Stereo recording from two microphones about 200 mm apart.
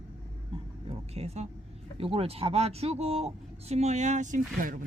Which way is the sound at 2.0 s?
30° right (ahead or behind).